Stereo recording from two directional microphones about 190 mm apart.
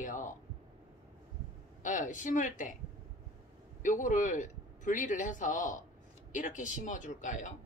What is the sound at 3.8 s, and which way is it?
Speech, 45° left (ahead or behind).